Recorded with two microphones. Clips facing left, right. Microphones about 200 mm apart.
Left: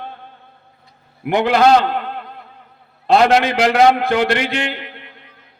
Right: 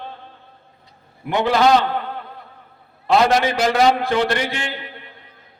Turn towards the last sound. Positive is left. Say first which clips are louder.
# left 4 dB
turn(degrees=70)  # may be behind; listen again after turning